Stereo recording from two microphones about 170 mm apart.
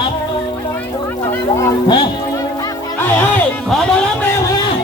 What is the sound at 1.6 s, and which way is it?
Speech, 20° left (ahead or behind).